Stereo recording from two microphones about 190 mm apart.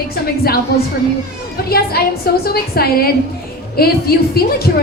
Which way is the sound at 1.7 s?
55° left (ahead or behind).